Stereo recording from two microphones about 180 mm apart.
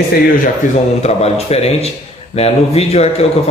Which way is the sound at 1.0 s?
35° left (ahead or behind).